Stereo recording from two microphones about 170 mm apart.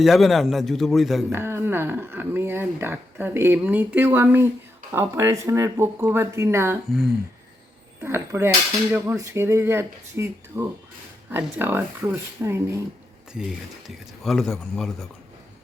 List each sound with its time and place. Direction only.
0.0 s speech: centre (ahead or behind)
1.3 s speech: 15° right (ahead or behind)
8.0 s speech: 15° right (ahead or behind)
13.3 s speech: centre (ahead or behind)